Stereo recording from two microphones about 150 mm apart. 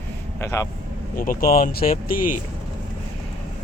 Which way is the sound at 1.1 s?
65° left (ahead or behind).